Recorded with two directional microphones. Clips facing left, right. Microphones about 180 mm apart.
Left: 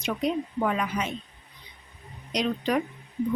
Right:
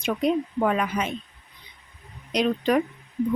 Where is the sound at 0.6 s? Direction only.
55° right (ahead or behind).